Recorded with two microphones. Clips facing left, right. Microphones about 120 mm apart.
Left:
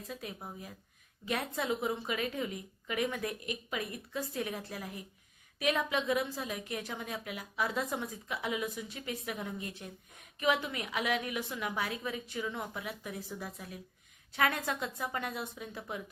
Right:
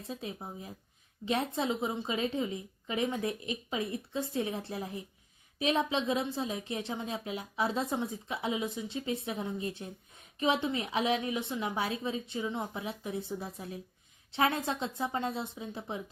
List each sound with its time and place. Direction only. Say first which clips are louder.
0.1 s a woman's voice: right 4 dB; 25° right (ahead or behind)